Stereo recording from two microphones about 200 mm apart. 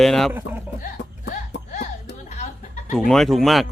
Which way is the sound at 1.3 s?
40° left (ahead or behind).